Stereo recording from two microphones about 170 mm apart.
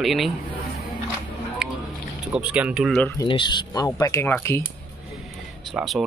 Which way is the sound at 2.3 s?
5° right (ahead or behind).